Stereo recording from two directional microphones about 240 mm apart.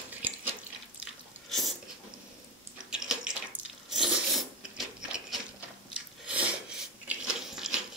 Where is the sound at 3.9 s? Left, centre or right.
Centre.